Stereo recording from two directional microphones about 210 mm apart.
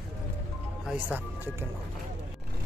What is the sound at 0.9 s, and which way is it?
Speech, 10° right (ahead or behind).